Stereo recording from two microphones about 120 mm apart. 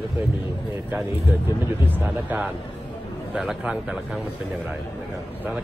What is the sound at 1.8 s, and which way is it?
Speech, 15° right (ahead or behind).